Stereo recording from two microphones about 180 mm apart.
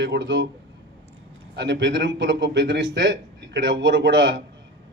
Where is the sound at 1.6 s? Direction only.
80° right.